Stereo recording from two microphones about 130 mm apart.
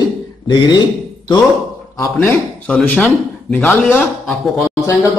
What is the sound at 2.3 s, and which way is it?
Speech, 10° left (ahead or behind).